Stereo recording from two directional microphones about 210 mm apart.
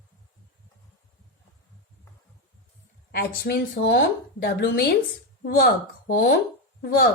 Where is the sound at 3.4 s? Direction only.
50° left (ahead or behind).